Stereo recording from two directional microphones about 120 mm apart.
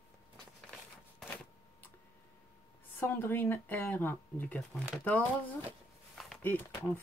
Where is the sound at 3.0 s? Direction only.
15° left (ahead or behind).